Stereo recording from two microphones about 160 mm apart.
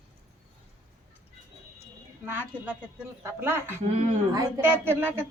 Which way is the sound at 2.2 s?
10° right (ahead or behind).